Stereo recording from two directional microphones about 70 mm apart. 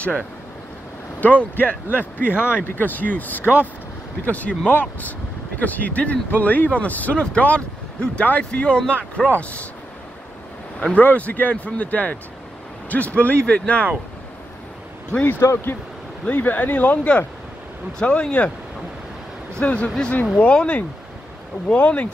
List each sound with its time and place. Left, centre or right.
0.0 s speech: centre
10.8 s speech: centre
15.1 s speech: left
19.6 s speech: centre